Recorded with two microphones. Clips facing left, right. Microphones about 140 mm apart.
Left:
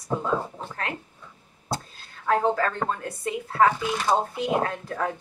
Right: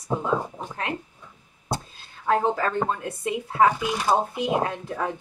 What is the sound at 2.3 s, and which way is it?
Speech, 15° right (ahead or behind).